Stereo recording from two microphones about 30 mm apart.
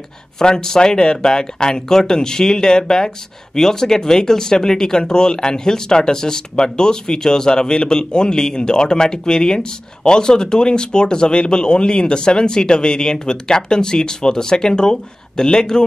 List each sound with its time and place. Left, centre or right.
0.4 s speech: left